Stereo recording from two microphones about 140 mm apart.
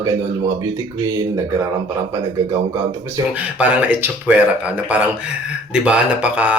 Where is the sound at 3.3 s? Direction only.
10° right (ahead or behind).